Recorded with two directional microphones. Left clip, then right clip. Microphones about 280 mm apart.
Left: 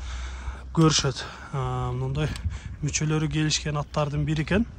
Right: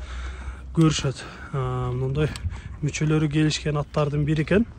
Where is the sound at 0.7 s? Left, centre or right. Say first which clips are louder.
Left 1 dB; centre.